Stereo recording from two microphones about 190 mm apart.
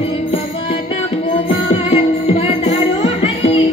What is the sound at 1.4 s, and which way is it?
Music, 35° left (ahead or behind).